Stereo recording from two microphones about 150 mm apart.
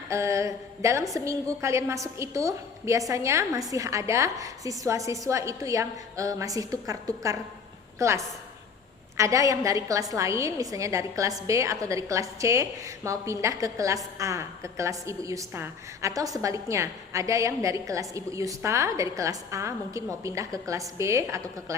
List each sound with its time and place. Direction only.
0.1 s a woman's voice: 20° right (ahead or behind)